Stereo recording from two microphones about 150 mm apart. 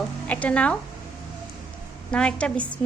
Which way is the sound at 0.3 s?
10° left (ahead or behind).